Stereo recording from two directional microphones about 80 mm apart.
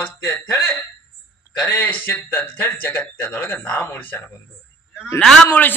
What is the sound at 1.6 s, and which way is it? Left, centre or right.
Speech, left.